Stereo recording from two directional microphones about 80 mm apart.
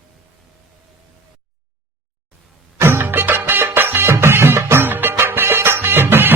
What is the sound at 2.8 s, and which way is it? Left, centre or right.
Music, right.